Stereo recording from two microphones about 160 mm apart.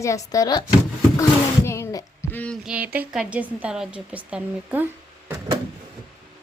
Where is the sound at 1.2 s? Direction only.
15° left (ahead or behind).